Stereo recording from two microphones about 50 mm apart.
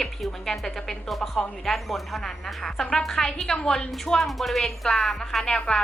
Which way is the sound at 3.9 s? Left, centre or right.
Centre.